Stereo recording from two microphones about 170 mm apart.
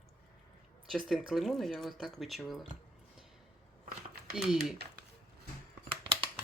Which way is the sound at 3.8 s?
65° right (ahead or behind).